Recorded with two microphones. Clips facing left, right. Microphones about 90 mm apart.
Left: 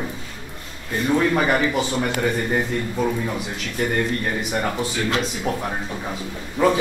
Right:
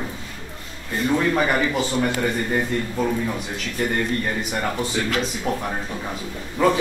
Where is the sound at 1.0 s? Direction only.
5° left (ahead or behind).